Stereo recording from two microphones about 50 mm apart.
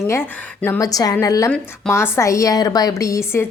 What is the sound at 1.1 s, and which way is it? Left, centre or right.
A woman's voice, left.